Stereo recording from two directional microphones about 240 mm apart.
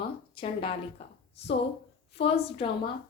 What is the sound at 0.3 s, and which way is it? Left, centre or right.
Speech, left.